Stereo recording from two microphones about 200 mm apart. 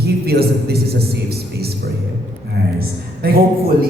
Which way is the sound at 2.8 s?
50° right (ahead or behind).